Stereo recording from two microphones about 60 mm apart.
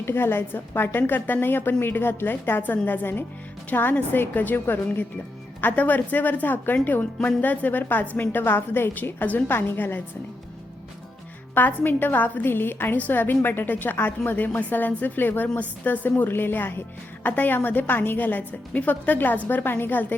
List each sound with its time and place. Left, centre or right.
0.0 s a woman's voice: left
11.5 s a woman's voice: left